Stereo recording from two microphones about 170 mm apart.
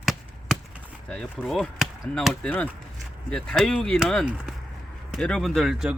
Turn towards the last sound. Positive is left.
turn(degrees=-5)  # may be behind; listen again after turning